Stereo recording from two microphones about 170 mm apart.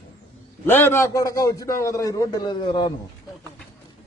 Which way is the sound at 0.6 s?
15° left (ahead or behind).